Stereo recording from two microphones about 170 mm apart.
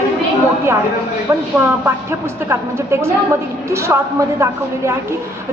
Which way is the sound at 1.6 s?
15° right (ahead or behind).